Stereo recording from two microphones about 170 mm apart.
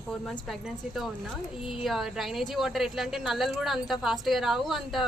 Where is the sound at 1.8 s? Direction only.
Centre (ahead or behind).